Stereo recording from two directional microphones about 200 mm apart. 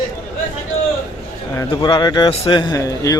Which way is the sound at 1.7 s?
20° left (ahead or behind).